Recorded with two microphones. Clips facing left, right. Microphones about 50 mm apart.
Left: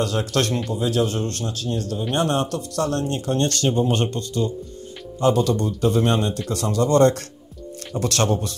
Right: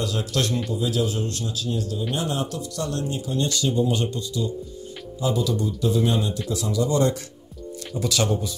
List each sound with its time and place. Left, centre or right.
0.0 s speech: left